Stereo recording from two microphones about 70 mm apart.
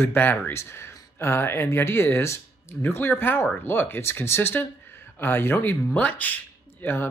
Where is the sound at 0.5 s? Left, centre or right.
Left.